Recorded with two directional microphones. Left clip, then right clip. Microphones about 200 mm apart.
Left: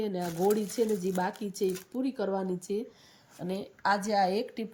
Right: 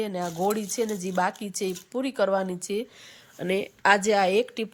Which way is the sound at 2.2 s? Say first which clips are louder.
Right 10 dB; 30° right (ahead or behind).